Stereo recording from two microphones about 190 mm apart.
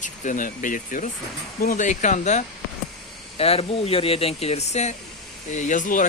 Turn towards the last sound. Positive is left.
turn(degrees=40)  # may be behind; listen again after turning